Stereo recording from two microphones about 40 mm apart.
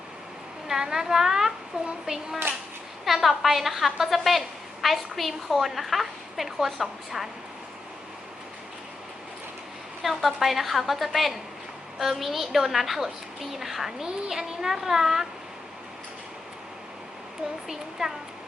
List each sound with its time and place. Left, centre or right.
0.7 s a woman's voice: centre
2.1 s a child's voice: right
3.0 s a woman's voice: centre
10.0 s a woman's voice: centre
18.0 s a woman's voice: centre